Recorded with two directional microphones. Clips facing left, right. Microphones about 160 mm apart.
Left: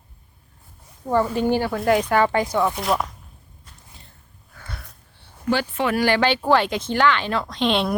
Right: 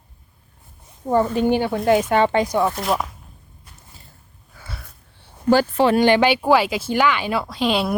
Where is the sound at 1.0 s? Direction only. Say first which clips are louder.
Right 2 dB; 20° right (ahead or behind).